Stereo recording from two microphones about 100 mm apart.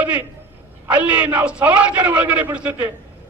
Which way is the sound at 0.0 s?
15° right (ahead or behind).